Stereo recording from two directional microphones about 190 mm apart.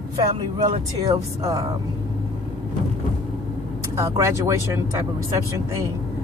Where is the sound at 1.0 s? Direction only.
20° right (ahead or behind).